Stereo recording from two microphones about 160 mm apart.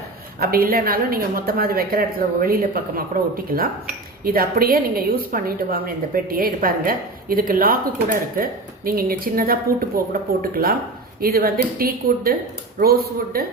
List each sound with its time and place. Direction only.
0.3 s a woman's voice: 70° right (ahead or behind)